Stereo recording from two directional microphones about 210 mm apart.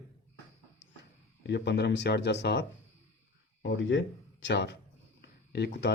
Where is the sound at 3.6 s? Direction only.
65° left (ahead or behind).